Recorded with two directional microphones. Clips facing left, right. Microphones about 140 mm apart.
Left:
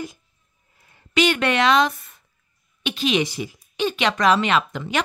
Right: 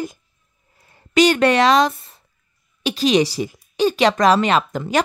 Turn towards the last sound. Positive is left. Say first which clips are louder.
# right 4 dB
turn(degrees=-40)  # may be behind; listen again after turning